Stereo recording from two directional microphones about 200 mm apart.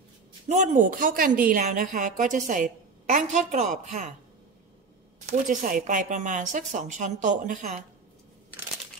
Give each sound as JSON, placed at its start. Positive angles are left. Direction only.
{"t": 0.5, "sound": "a woman's voice", "side_deg": -40}
{"t": 5.2, "sound": "a woman's voice", "side_deg": -40}